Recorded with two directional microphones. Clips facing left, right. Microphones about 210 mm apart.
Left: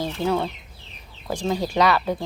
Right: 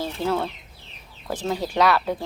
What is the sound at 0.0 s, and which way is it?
Speech, 5° right (ahead or behind).